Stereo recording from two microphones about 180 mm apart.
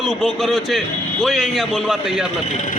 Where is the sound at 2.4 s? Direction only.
40° left (ahead or behind).